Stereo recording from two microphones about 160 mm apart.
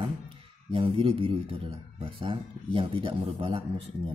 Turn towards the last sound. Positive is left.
turn(degrees=-35)  # may be behind; listen again after turning